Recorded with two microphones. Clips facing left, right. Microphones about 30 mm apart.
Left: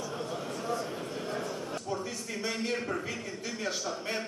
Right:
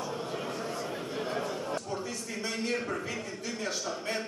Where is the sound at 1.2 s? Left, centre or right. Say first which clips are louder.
Right 3 dB; right.